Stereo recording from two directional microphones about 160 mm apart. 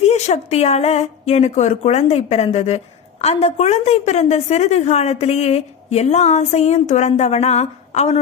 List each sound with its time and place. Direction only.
0.0 s a woman's voice: 45° left (ahead or behind)